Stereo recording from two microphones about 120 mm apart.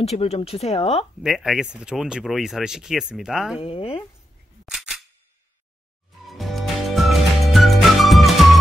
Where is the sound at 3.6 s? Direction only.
50° left (ahead or behind).